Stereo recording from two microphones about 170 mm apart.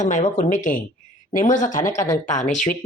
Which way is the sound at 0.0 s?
45° left (ahead or behind).